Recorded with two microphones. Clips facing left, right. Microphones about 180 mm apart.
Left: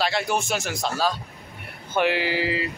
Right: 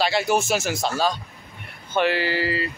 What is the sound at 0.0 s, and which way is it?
Speech, 5° right (ahead or behind).